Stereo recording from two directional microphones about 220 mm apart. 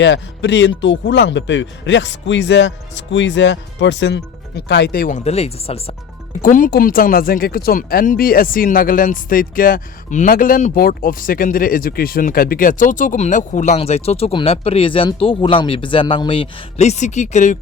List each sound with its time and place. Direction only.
0.0 s speech: 55° left (ahead or behind); by 5.9 s 25° left (ahead or behind)
6.4 s speech: 40° left (ahead or behind)